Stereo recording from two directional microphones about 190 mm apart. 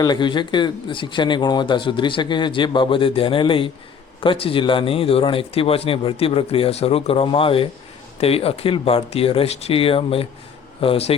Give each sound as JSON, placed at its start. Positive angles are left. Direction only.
{"t": 0.0, "sound": "a man's voice", "side_deg": 25}